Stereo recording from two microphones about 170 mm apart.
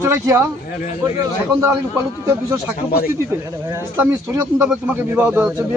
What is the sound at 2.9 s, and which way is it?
Speech, 60° left (ahead or behind).